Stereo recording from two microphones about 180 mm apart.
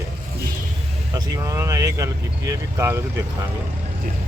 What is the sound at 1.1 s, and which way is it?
Speech, 20° right (ahead or behind).